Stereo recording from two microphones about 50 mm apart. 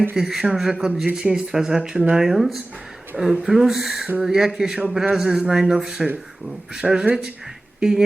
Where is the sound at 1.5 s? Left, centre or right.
Centre.